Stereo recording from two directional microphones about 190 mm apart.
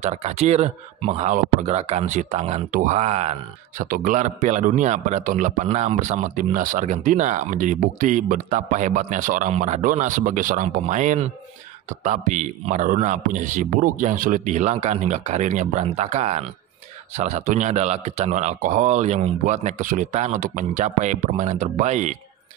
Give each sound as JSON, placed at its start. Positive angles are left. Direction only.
{"t": 0.0, "sound": "speech", "side_deg": -35}